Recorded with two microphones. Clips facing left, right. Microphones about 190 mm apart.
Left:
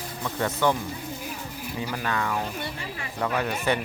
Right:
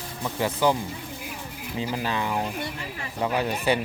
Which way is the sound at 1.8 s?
25° right (ahead or behind).